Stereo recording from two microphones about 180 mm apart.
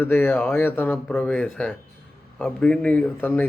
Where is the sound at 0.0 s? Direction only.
10° left (ahead or behind).